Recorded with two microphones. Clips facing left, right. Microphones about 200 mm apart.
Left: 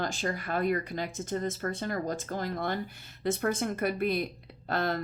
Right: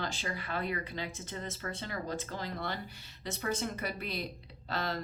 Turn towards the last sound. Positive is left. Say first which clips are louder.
# left 6 dB
turn(degrees=50)  # may be behind; listen again after turning